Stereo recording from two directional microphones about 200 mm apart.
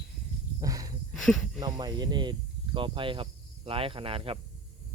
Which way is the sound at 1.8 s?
20° right (ahead or behind).